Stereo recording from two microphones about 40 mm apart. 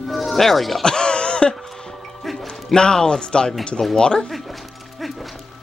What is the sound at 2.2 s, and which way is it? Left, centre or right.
Music, centre.